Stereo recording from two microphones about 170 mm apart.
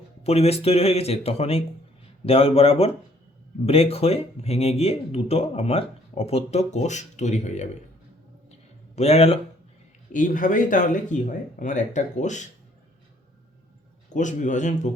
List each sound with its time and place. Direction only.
0.3 s speech: 35° left (ahead or behind)
9.0 s speech: 40° left (ahead or behind)
10.1 s speech: 50° left (ahead or behind)
14.1 s speech: 45° left (ahead or behind)